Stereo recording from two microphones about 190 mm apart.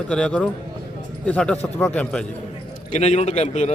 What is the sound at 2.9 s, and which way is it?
Speech, 35° left (ahead or behind).